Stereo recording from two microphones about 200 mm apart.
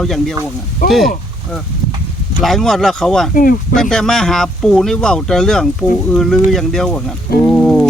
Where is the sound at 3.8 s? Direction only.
5° left (ahead or behind).